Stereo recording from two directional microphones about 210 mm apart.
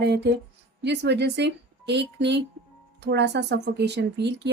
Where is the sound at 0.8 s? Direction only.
55° right (ahead or behind).